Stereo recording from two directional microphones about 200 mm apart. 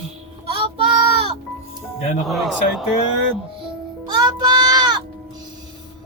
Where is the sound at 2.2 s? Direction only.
Centre (ahead or behind).